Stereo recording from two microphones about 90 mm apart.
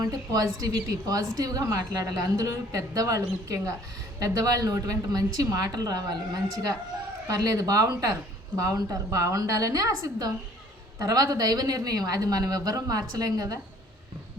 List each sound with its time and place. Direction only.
0.0 s a woman's voice: 40° right (ahead or behind)
7.3 s a woman's voice: 40° right (ahead or behind)